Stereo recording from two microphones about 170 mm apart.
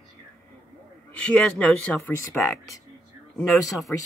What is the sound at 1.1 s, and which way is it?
Speech, 5° left (ahead or behind).